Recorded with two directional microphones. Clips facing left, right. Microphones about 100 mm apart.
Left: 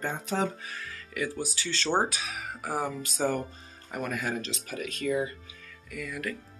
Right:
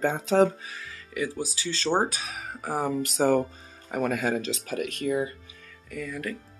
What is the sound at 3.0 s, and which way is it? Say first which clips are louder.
Speech: right 7 dB; 75° right (ahead or behind).